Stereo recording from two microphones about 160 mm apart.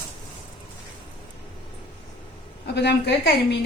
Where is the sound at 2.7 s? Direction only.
90° left.